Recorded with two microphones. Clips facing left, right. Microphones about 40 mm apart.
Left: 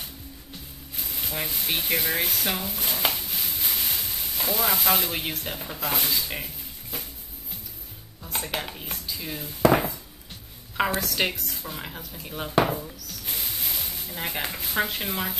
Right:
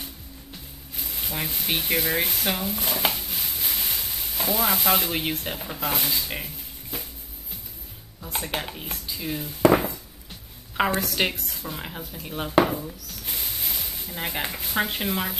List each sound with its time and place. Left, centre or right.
0.9 s a sound: centre
5.1 s speech: centre
8.2 s a woman's voice: centre
10.8 s a woman's voice: centre